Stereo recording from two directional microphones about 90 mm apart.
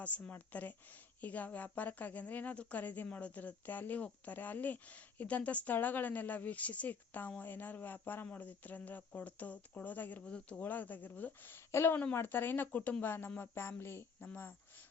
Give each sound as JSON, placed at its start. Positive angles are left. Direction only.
{"t": 0.0, "sound": "a woman's voice", "side_deg": 15}